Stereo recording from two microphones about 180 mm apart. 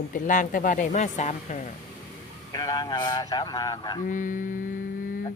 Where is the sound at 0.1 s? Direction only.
50° left (ahead or behind).